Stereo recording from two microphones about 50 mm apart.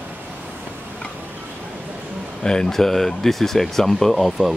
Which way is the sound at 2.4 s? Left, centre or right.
Centre.